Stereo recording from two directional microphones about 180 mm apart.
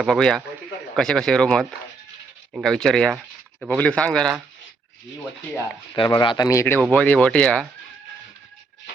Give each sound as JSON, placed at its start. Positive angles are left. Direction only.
{"t": 0.0, "sound": "speech", "side_deg": 5}
{"t": 6.0, "sound": "speech", "side_deg": 25}